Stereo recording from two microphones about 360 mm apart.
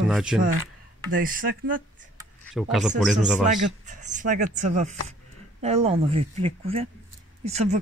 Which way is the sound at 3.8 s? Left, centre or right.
Right.